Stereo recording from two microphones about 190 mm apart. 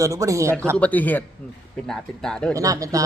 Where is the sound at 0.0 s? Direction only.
15° right (ahead or behind).